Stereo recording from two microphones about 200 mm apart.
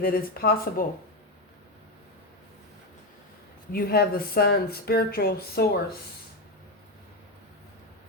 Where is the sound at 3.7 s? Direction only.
50° left (ahead or behind).